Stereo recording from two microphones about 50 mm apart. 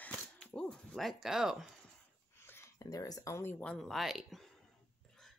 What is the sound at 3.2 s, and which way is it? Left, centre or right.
Speech, left.